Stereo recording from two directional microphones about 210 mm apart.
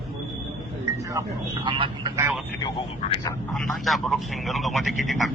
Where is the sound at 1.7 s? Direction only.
25° right (ahead or behind).